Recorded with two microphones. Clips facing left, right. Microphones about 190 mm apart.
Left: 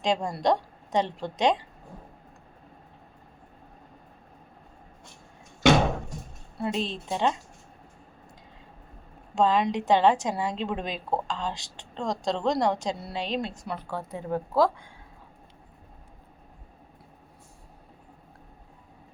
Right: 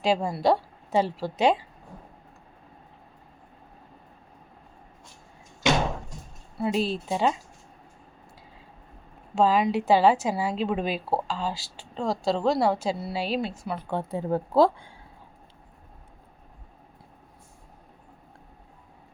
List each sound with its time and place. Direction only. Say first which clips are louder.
0.0 s a woman's voice: right 2 dB; 5° right (ahead or behind)
6.6 s a woman's voice: right 4 dB; 5° right (ahead or behind)
9.3 s a woman's voice: right 2 dB; 5° right (ahead or behind)
13.9 s speech: right 4 dB; 30° right (ahead or behind)